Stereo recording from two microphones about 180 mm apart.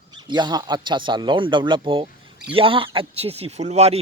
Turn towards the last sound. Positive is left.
turn(degrees=-35)  # may be behind; listen again after turning